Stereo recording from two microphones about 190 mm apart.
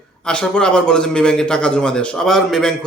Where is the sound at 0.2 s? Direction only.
5° left (ahead or behind).